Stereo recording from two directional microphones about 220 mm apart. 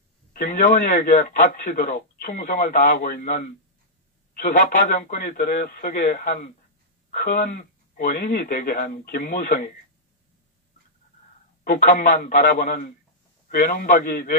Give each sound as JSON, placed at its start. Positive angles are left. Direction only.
{"t": 0.3, "sound": "a man's voice", "side_deg": 40}
{"t": 11.8, "sound": "a man's voice", "side_deg": 35}